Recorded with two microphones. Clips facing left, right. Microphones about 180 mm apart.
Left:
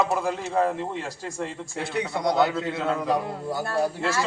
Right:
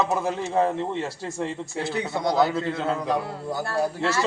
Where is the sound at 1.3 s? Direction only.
20° right (ahead or behind).